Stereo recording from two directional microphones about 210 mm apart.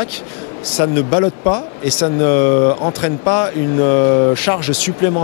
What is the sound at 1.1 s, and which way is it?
Speech, 25° left (ahead or behind).